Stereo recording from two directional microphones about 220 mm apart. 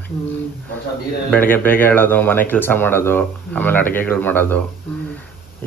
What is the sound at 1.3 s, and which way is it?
Speech, 10° left (ahead or behind).